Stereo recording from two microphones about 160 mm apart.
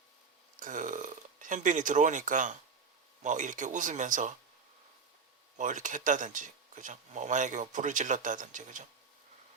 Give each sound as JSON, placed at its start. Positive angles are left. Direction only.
{"t": 0.6, "sound": "speech", "side_deg": -55}
{"t": 5.5, "sound": "speech", "side_deg": -50}